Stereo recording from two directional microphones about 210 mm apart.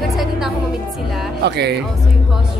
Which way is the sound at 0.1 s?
Centre (ahead or behind).